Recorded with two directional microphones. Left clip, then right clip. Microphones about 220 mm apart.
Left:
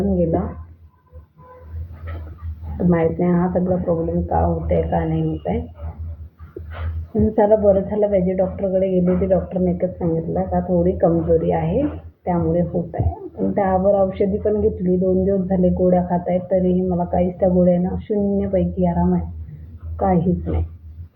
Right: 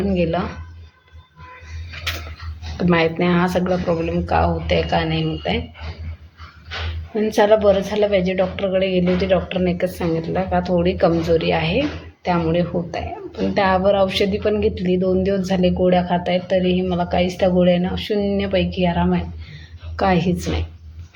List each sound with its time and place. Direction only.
2.9 s speech: 15° right (ahead or behind)
7.3 s speech: 15° right (ahead or behind)